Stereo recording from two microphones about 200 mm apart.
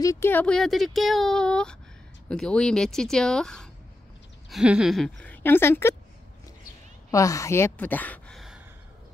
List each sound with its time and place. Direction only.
0.0 s speech: 15° left (ahead or behind)
7.1 s a woman's voice: 15° left (ahead or behind)